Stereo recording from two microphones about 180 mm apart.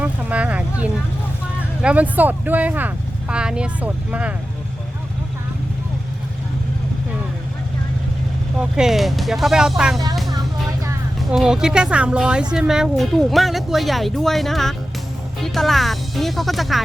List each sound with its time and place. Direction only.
0.0 s a sound: 10° right (ahead or behind)
1.8 s speech: 5° right (ahead or behind)
8.5 s speech: 5° right (ahead or behind)
10.3 s vehicle: 20° right (ahead or behind)
11.3 s speech: 5° right (ahead or behind)